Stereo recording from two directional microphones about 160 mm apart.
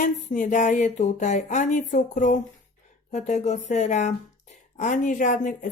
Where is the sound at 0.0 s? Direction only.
55° left (ahead or behind).